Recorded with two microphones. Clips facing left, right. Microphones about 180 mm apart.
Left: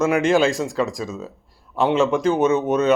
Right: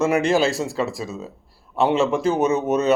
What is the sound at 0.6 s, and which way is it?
Speech, 5° right (ahead or behind).